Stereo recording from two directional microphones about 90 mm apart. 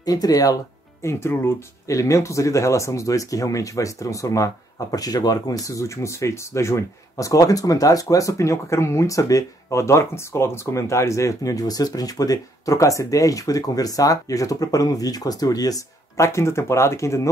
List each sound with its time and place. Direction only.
0.0 s speech: 45° left (ahead or behind)
1.0 s speech: 30° left (ahead or behind); by 16.3 s 45° left (ahead or behind)
16.3 s speech: 30° left (ahead or behind)